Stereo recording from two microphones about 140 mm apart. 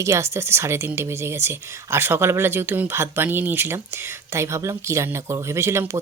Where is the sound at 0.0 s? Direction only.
20° right (ahead or behind).